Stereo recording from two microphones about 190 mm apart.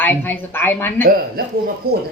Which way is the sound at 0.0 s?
10° left (ahead or behind).